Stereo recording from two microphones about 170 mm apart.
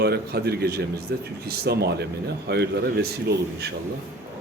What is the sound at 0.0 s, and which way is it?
A man's voice, 70° right (ahead or behind).